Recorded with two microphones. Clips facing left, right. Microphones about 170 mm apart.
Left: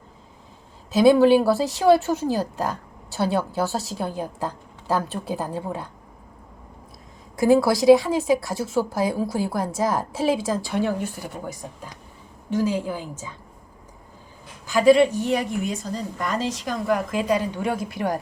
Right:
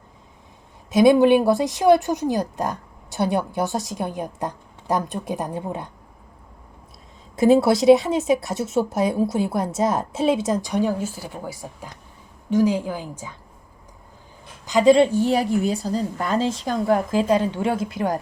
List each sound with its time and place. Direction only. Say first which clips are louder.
0.9 s a woman's voice: right 1 dB; 15° right (ahead or behind)
7.3 s a woman's voice: right 2 dB; 25° right (ahead or behind)
14.7 s a woman's voice: right 1 dB; 20° right (ahead or behind)